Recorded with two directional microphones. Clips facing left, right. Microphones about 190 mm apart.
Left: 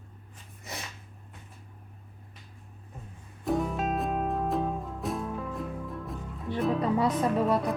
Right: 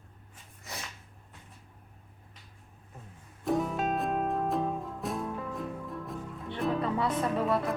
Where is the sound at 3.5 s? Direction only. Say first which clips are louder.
Even; centre (ahead or behind).